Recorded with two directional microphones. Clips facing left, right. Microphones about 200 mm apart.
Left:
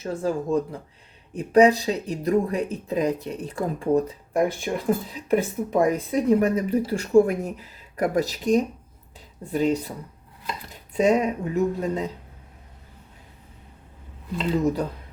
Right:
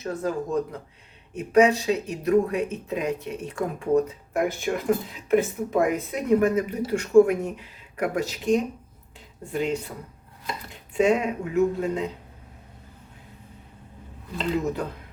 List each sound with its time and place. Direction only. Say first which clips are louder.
0.0 s speech: left 2 dB; 30° left (ahead or behind)